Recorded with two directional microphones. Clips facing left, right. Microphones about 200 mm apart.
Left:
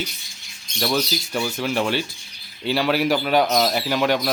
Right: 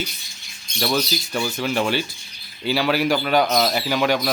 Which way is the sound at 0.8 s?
Centre (ahead or behind).